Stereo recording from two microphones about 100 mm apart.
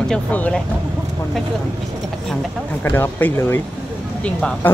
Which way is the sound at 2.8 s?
25° left (ahead or behind).